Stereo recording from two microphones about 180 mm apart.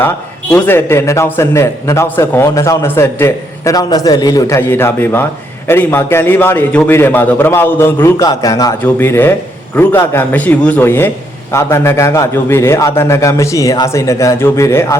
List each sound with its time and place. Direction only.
0.5 s a man's voice: 10° left (ahead or behind)